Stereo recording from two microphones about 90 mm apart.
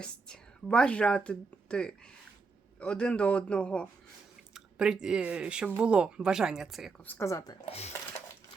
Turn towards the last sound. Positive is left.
turn(degrees=35)  # may be behind; listen again after turning